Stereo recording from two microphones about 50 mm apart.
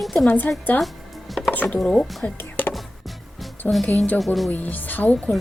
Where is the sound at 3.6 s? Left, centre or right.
Left.